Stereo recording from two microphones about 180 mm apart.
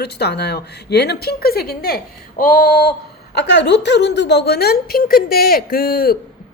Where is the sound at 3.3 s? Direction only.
70° left (ahead or behind).